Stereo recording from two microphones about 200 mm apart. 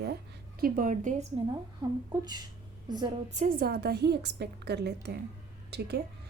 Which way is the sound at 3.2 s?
40° right (ahead or behind).